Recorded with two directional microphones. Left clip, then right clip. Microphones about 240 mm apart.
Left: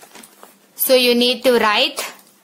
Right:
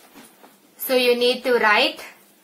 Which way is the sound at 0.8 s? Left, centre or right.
Left.